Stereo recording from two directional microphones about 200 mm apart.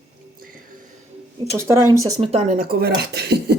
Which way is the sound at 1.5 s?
15° right (ahead or behind).